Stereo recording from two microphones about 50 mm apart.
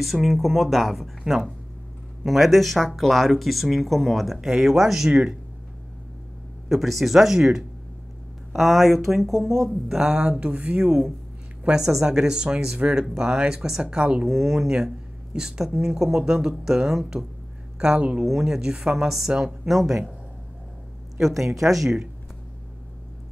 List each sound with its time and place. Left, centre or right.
0.0 s speech: centre
6.7 s speech: centre
9.9 s speech: right
14.2 s speech: centre
17.7 s speech: right
18.2 s speech: centre
19.7 s speech: centre
21.4 s speech: centre